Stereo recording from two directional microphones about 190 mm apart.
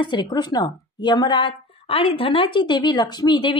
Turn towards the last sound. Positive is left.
turn(degrees=25)  # may be behind; listen again after turning